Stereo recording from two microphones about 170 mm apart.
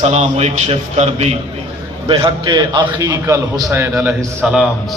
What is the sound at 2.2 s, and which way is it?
A man's voice, 25° right (ahead or behind).